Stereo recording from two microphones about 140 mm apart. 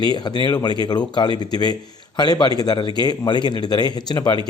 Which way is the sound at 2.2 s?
30° left (ahead or behind).